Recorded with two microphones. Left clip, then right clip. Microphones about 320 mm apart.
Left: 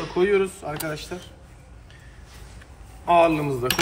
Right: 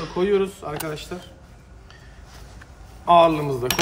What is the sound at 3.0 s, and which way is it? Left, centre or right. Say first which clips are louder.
Speech: right 3 dB; centre.